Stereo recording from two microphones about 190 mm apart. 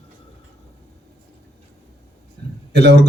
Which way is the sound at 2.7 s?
60° right (ahead or behind).